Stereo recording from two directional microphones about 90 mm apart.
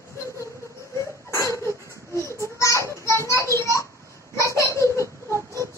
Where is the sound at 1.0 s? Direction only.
35° left (ahead or behind).